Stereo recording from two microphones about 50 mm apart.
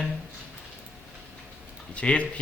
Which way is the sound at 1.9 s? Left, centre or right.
Left.